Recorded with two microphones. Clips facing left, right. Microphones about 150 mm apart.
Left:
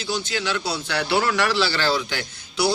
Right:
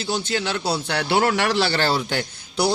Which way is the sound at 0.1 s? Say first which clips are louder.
Right 1 dB; 50° right (ahead or behind).